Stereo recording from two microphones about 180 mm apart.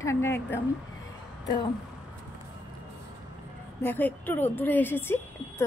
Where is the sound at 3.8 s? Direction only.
10° left (ahead or behind).